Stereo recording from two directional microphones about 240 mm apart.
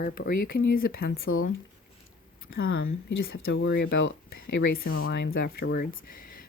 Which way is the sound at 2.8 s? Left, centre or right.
Left.